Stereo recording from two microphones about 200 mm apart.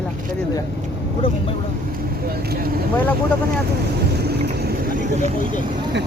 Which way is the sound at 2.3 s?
50° right (ahead or behind).